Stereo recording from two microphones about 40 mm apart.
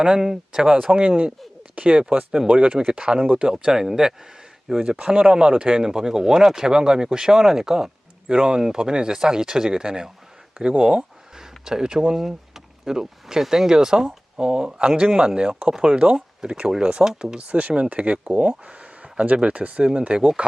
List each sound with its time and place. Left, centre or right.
0.2 s speech: centre
0.9 s speech: right
12.1 s speech: centre
17.1 s speech: centre
17.3 s speech: right
17.7 s speech: right